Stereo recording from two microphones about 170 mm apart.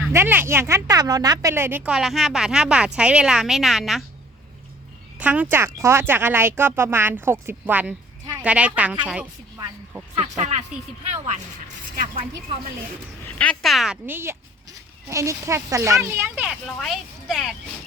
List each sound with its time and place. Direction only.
0.1 s speech: 15° right (ahead or behind)
5.2 s speech: 10° right (ahead or behind)
9.6 s a sound: 15° right (ahead or behind)
10.2 s speech: 40° right (ahead or behind)
13.2 s speech: 5° left (ahead or behind)
15.1 s speech: 15° right (ahead or behind)
16.6 s speech: centre (ahead or behind)